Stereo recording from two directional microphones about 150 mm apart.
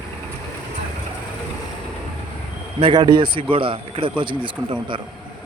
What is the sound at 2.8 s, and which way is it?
Speech, 30° right (ahead or behind).